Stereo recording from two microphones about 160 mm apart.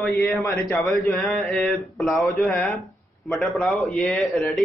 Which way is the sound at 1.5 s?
Centre (ahead or behind).